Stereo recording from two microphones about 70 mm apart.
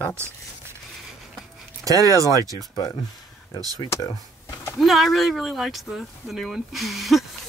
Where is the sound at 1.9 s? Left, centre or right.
Right.